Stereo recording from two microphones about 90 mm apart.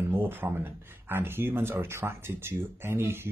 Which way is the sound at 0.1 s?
20° right (ahead or behind).